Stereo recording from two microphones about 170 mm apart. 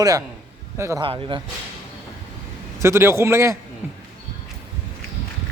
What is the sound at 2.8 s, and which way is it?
Speech, 15° right (ahead or behind).